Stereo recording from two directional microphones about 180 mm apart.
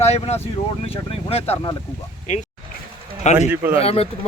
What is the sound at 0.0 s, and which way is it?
Speech, 35° left (ahead or behind).